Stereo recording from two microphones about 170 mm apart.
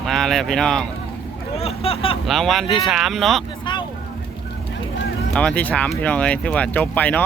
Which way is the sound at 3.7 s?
30° left (ahead or behind).